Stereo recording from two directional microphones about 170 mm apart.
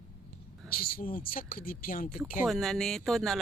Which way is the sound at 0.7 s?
60° left (ahead or behind).